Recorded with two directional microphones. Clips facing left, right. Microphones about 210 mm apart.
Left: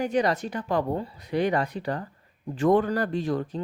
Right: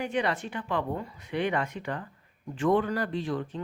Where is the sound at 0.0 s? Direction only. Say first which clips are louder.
Left 5 dB; 40° left (ahead or behind).